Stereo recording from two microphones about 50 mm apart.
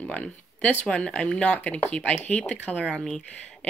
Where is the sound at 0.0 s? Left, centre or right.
Left.